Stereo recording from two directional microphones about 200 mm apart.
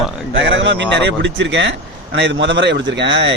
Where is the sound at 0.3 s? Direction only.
65° right (ahead or behind).